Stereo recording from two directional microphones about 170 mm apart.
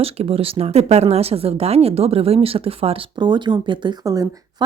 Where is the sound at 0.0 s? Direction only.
35° right (ahead or behind).